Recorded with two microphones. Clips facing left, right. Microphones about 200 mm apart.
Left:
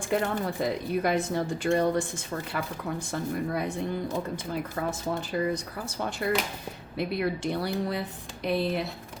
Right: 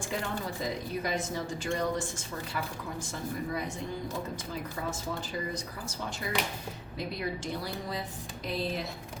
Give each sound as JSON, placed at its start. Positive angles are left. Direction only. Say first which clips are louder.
{"t": 0.1, "sound": "a woman's voice", "louder": "left 8 dB", "side_deg": 60}